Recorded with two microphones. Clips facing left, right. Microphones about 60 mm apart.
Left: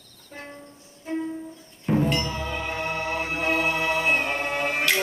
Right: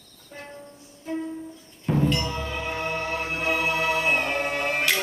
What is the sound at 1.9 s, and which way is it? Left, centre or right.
Tubular bells, left.